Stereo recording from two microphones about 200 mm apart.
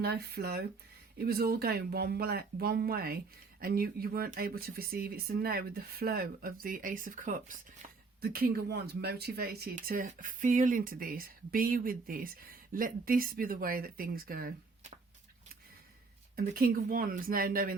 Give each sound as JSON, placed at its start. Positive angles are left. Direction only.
{"t": 0.0, "sound": "speech", "side_deg": -50}
{"t": 16.3, "sound": "speech", "side_deg": -45}